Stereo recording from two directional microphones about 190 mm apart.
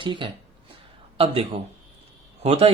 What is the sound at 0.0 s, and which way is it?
Speech, 25° right (ahead or behind).